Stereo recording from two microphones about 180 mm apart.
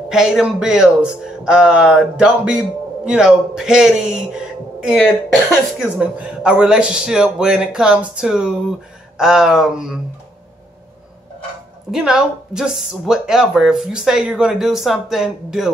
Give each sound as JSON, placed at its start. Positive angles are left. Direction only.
{"t": 0.1, "sound": "speech", "side_deg": 0}
{"t": 11.9, "sound": "speech", "side_deg": -5}